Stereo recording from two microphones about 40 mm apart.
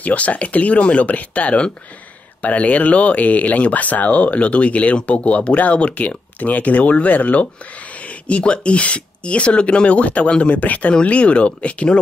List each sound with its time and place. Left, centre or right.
0.0 s speech: left